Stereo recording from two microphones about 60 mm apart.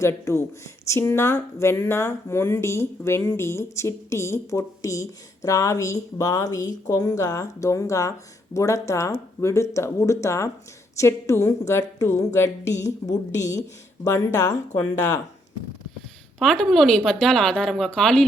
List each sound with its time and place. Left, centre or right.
0.0 s speech: left
14.0 s speech: left
16.4 s a woman's voice: centre